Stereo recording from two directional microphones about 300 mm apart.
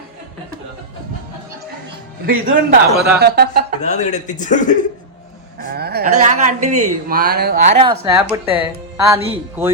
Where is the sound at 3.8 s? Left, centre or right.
Left.